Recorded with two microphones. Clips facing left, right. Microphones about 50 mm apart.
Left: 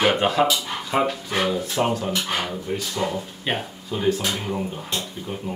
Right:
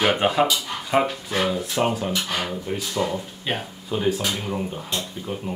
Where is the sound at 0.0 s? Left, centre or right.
Centre.